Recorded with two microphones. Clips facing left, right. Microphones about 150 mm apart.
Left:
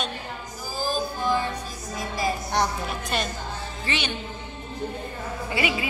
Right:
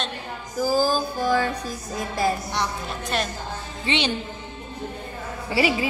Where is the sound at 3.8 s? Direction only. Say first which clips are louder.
Right 6 dB; 25° right (ahead or behind).